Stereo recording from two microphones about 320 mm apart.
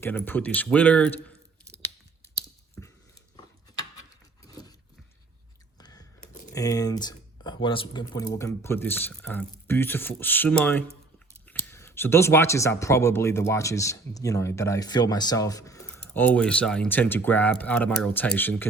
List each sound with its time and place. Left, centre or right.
0.0 s speech: centre
2.8 s dog: centre
4.4 s a sound: centre
5.8 s a sound: centre
6.1 s computer keyboard: left
6.5 s speech: centre